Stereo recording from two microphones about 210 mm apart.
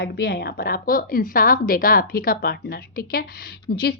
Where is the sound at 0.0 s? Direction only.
50° left (ahead or behind).